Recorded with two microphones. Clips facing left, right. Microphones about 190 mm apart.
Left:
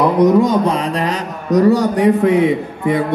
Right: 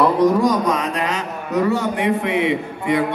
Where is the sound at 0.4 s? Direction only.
25° left (ahead or behind).